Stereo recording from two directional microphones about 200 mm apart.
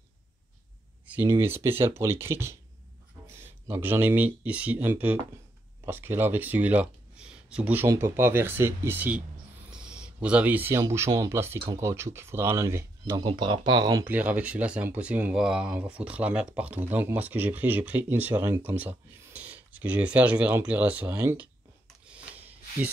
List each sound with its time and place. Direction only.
1.0 s speech: 10° right (ahead or behind)
14.0 s speech: 10° right (ahead or behind)